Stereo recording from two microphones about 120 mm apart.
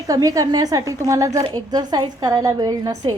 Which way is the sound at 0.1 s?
30° right (ahead or behind).